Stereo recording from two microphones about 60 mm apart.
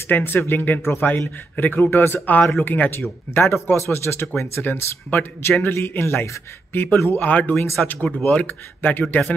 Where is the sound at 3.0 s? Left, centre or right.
Left.